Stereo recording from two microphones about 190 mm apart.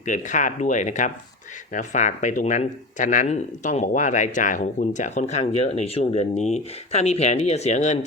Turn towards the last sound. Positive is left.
turn(degrees=35)  # may be behind; listen again after turning